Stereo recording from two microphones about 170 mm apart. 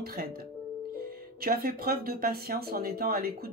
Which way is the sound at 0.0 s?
65° right (ahead or behind).